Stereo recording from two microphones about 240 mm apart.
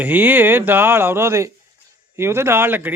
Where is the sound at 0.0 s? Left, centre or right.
Centre.